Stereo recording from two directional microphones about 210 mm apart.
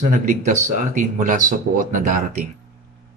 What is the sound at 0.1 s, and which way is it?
Speech, 40° right (ahead or behind).